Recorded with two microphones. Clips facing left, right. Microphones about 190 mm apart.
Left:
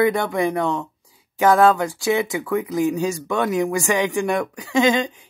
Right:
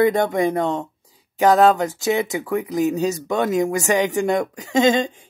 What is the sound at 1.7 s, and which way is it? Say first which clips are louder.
A woman's voice: even; 20° right (ahead or behind).